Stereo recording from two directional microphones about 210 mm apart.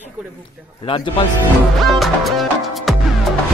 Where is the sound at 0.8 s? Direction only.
25° left (ahead or behind).